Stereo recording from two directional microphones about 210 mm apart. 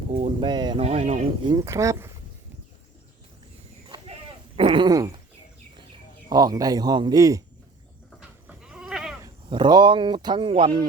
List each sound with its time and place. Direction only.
0.1 s speech: 25° right (ahead or behind)
1.5 s speech: 15° right (ahead or behind)
3.8 s a sound: 20° right (ahead or behind)
4.5 s speech: 25° right (ahead or behind)
6.2 s speech: 20° right (ahead or behind)
8.4 s goat: 5° right (ahead or behind)
9.2 s speech: 20° right (ahead or behind)